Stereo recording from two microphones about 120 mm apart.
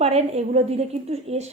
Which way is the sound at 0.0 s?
60° right (ahead or behind).